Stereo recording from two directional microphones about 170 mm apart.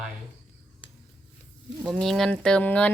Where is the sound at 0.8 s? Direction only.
30° left (ahead or behind).